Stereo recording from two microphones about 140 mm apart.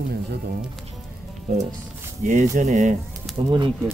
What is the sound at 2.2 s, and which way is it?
Speech, 60° right (ahead or behind).